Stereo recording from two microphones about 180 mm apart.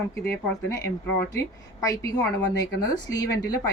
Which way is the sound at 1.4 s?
20° left (ahead or behind).